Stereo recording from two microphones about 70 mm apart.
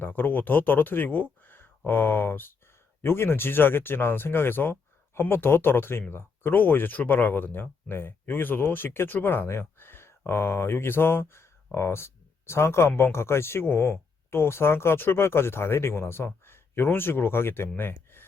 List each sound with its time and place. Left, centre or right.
0.0 s speech: left